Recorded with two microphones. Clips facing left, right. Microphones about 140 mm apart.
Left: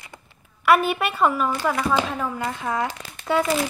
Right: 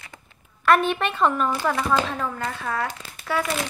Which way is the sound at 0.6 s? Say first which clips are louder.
Left 1 dB; 10° left (ahead or behind).